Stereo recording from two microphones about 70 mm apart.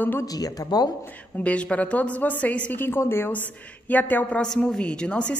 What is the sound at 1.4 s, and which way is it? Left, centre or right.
A woman's voice, centre.